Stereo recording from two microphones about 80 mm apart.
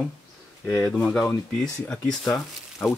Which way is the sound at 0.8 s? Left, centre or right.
Centre.